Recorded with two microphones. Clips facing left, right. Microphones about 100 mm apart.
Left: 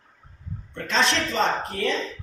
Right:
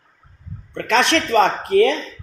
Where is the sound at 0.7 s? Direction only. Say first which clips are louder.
Right 6 dB; 70° right (ahead or behind).